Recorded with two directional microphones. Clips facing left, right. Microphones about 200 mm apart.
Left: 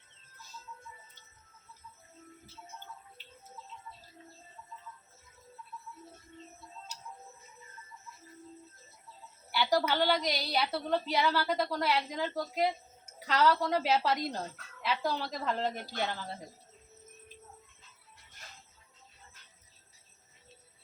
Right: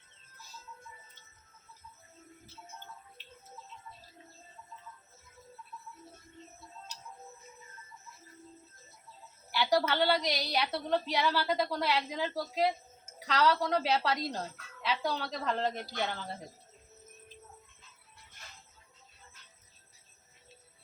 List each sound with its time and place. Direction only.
9.5 s a woman's voice: centre (ahead or behind)